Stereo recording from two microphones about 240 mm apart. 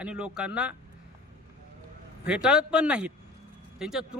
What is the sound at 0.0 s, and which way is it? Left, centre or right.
Speech, centre.